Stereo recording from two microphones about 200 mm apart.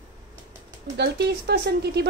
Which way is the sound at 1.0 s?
55° right (ahead or behind).